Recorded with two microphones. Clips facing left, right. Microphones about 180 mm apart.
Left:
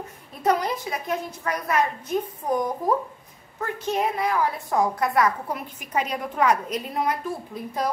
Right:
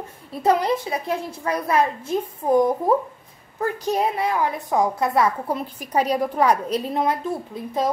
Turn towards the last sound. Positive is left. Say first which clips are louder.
# right 4 dB
turn(degrees=-25)  # may be behind; listen again after turning